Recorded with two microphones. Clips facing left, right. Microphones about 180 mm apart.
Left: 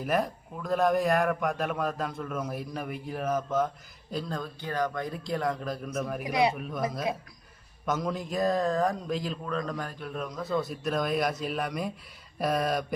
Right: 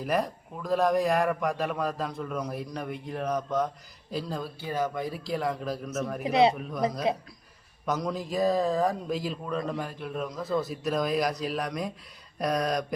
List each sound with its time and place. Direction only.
0.0 s speech: centre (ahead or behind)
6.2 s speech: 25° right (ahead or behind)
6.6 s speech: centre (ahead or behind)
7.1 s speech: 25° right (ahead or behind)
7.9 s speech: centre (ahead or behind)